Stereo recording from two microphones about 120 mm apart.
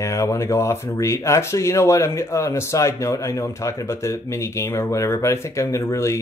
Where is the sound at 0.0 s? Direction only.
25° left (ahead or behind).